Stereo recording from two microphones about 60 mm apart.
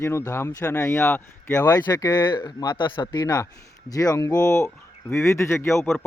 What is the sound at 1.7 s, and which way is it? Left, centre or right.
Speech, left.